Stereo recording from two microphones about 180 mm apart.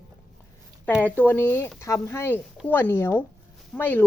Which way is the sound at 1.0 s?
10° left (ahead or behind).